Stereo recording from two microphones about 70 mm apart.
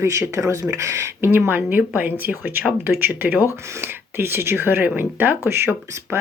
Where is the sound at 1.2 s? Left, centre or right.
Right.